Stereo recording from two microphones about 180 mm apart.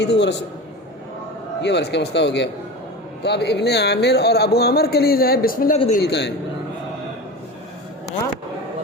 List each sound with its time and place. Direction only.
0.0 s speech: 75° left (ahead or behind)
1.6 s speech: 70° left (ahead or behind); by 5.7 s 55° left (ahead or behind)
5.7 s a man's voice: 35° left (ahead or behind)
6.1 s speech: 70° left (ahead or behind)